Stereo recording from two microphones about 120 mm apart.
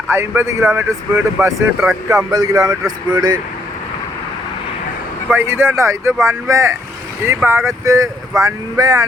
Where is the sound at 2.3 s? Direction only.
35° right (ahead or behind).